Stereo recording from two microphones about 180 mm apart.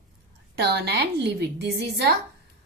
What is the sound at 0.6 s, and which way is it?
A woman's voice, 65° right (ahead or behind).